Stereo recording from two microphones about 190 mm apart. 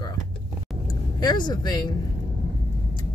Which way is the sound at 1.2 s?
20° left (ahead or behind).